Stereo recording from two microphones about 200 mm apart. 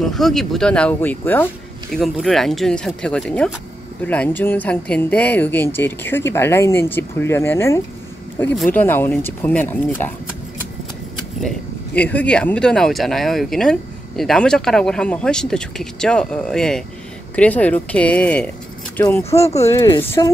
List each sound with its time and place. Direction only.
0.0 s speech: centre (ahead or behind)
11.4 s speech: 10° left (ahead or behind)
19.3 s speech: 30° left (ahead or behind)
19.6 s speech: 15° left (ahead or behind)